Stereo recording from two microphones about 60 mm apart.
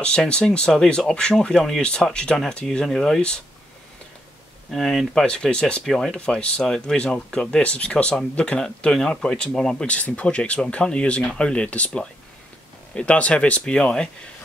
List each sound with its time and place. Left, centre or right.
0.0 s speech: centre
4.6 s speech: centre
5.2 s speech: centre
9.8 s speech: left